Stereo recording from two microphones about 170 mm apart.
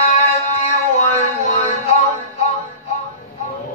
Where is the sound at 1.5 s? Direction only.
40° left (ahead or behind).